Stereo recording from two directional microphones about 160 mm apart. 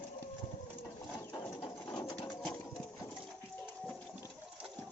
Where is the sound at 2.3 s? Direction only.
Centre (ahead or behind).